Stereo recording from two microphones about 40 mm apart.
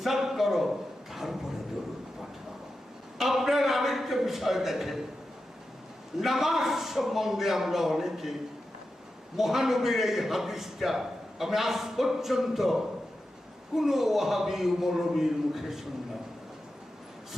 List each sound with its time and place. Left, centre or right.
0.0 s a sound: centre
3.2 s a man's voice: centre
6.1 s a man's voice: centre
9.4 s a man's voice: centre